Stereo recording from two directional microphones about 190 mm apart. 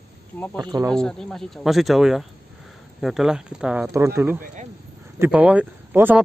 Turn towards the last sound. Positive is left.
turn(degrees=-10)  # may be behind; listen again after turning